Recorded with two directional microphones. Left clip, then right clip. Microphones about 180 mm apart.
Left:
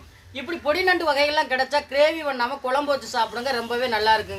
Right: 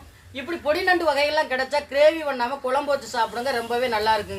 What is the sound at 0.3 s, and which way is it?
A woman's voice, 20° left (ahead or behind).